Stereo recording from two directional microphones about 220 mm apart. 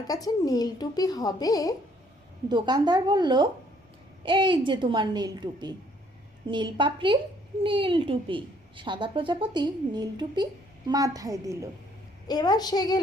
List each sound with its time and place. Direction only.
0.1 s speech: 15° left (ahead or behind)
2.5 s a woman's voice: 20° right (ahead or behind)
12.3 s speech: 15° left (ahead or behind)